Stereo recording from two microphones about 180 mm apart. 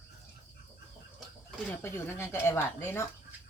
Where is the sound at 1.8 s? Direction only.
10° left (ahead or behind).